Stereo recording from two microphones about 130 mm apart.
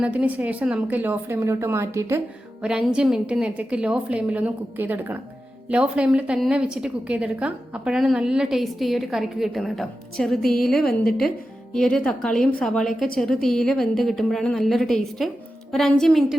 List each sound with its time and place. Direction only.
0.0 s a woman's voice: 10° right (ahead or behind)
2.6 s a woman's voice: 5° right (ahead or behind)